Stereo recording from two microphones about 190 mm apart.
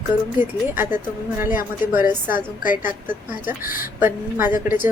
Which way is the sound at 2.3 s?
45° left (ahead or behind).